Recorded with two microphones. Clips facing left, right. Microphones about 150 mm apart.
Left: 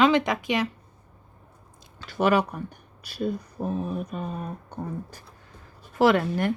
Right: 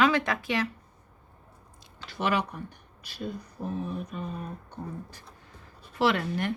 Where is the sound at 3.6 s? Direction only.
60° left (ahead or behind).